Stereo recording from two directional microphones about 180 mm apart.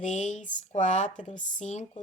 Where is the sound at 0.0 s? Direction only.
40° left (ahead or behind).